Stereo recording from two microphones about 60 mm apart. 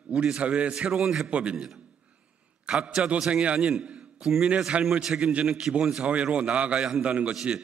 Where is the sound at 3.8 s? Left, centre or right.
Centre.